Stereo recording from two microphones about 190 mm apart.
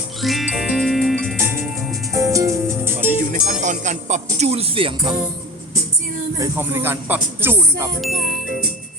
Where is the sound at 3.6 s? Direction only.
40° right (ahead or behind).